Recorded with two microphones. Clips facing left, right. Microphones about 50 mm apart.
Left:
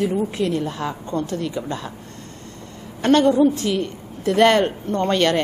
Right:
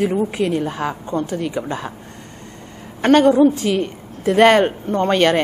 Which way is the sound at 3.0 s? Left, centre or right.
Right.